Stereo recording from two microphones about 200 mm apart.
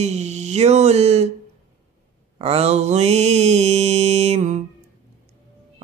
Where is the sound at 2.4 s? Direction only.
30° right (ahead or behind).